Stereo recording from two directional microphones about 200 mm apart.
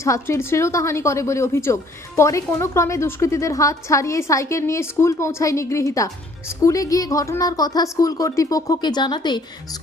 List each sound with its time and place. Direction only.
0.0 s a woman's voice: 15° left (ahead or behind)